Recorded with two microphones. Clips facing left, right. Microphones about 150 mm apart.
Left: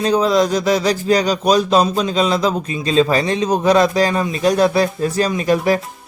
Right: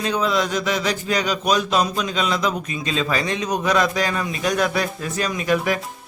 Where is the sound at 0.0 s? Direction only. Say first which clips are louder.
Left 7 dB; 35° left (ahead or behind).